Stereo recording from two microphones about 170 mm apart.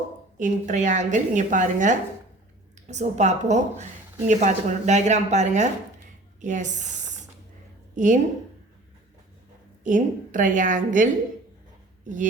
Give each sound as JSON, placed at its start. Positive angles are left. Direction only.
{"t": 0.3, "sound": "a woman's voice", "side_deg": -50}
{"t": 7.9, "sound": "a woman's voice", "side_deg": -45}
{"t": 9.8, "sound": "a woman's voice", "side_deg": -50}